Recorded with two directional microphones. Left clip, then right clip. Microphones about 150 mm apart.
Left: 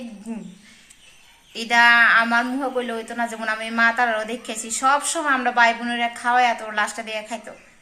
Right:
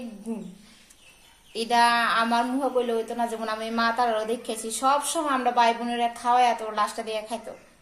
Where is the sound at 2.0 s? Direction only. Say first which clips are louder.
Left 7 dB; 25° left (ahead or behind).